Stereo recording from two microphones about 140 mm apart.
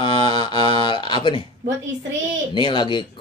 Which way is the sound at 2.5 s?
35° left (ahead or behind).